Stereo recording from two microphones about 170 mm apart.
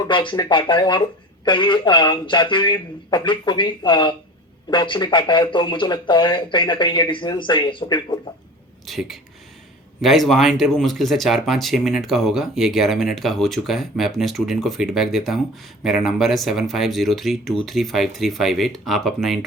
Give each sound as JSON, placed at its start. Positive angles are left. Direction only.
{"t": 0.0, "sound": "speech", "side_deg": 30}
{"t": 8.9, "sound": "speech", "side_deg": 0}